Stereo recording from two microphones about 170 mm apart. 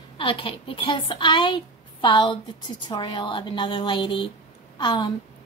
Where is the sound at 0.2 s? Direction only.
30° left (ahead or behind).